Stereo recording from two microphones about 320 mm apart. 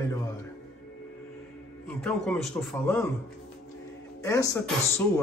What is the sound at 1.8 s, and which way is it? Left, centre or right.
Speech, centre.